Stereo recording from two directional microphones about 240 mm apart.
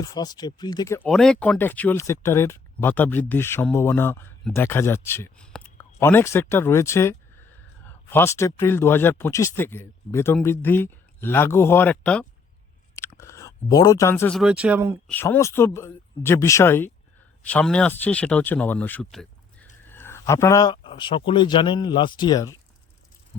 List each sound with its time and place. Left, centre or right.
0.0 s speech: centre
15.1 s speech: centre